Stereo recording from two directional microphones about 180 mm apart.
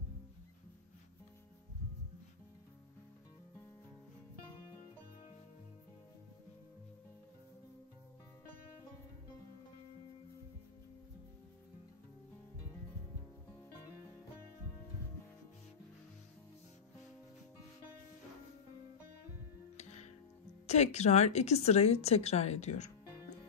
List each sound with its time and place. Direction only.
19.8 s music: 40° left (ahead or behind)
20.6 s a woman's voice: 40° left (ahead or behind)